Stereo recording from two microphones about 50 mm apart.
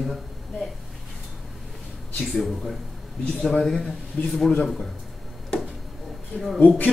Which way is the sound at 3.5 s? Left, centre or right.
Centre.